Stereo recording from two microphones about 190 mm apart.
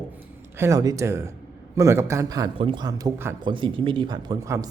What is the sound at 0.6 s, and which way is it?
Speech, 20° right (ahead or behind).